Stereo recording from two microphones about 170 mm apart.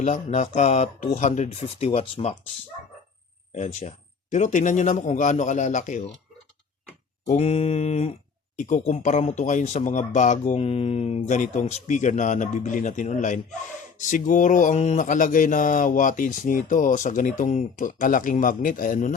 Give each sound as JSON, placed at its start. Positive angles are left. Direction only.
{"t": 0.0, "sound": "speech", "side_deg": 45}
{"t": 3.5, "sound": "speech", "side_deg": 45}
{"t": 7.3, "sound": "speech", "side_deg": 35}